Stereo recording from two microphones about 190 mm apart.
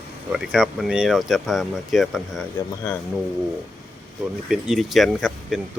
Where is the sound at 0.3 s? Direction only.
5° right (ahead or behind).